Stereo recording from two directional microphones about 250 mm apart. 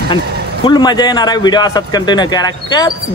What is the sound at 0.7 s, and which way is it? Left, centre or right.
Speech, centre.